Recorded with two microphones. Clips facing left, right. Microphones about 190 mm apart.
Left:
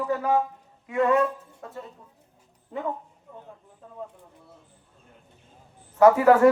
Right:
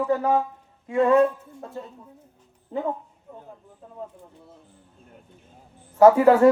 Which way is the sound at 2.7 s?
35° right (ahead or behind).